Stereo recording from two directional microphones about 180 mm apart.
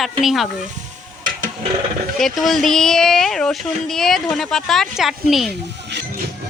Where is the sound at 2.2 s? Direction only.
Centre (ahead or behind).